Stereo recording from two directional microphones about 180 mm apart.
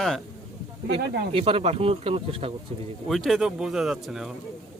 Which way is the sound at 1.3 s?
30° right (ahead or behind).